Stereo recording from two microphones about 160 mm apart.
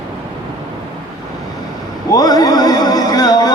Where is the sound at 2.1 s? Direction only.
25° left (ahead or behind).